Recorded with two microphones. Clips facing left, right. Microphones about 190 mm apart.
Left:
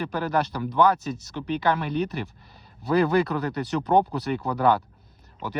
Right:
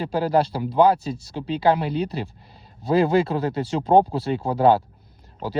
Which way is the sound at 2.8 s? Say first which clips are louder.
Right 2 dB; 20° right (ahead or behind).